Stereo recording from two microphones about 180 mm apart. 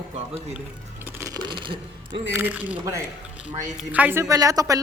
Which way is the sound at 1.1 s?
15° right (ahead or behind).